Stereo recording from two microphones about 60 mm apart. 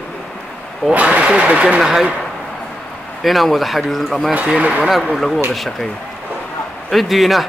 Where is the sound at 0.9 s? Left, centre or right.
Right.